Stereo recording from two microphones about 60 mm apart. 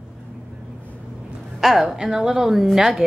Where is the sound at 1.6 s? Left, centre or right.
Centre.